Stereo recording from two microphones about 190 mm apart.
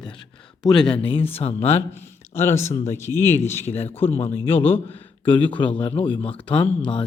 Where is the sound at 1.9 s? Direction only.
15° left (ahead or behind).